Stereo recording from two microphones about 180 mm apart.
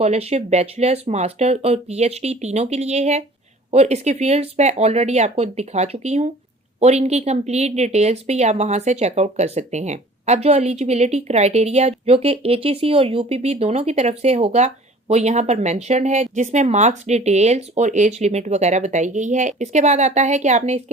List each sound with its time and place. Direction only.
0.0 s speech: 35° right (ahead or behind)